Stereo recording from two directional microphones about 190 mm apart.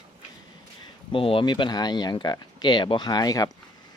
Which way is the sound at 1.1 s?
30° left (ahead or behind).